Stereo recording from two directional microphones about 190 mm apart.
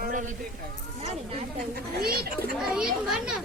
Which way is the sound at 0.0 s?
40° right (ahead or behind).